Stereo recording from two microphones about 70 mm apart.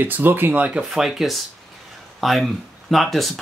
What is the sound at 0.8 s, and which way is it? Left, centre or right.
Speech, centre.